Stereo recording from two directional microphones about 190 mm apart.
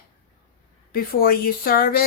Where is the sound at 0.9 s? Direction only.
50° left (ahead or behind).